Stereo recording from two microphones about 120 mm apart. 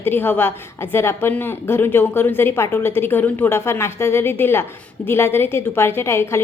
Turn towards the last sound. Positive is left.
turn(degrees=20)  # may be behind; listen again after turning